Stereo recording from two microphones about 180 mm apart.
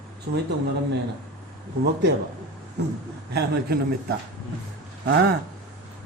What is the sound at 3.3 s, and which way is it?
A man's voice, 65° right (ahead or behind).